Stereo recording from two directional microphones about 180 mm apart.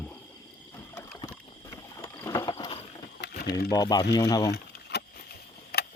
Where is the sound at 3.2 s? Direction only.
65° left (ahead or behind).